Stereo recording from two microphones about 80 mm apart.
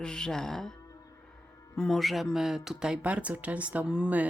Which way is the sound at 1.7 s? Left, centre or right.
Centre.